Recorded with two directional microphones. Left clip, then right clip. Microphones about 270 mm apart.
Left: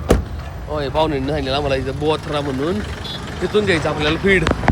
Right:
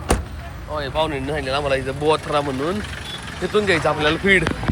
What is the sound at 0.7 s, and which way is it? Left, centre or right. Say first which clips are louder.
Speech: left 3 dB; centre.